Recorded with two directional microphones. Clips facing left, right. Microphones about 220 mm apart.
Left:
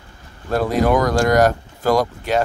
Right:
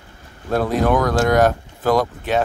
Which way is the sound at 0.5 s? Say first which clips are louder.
Left 1 dB; centre (ahead or behind).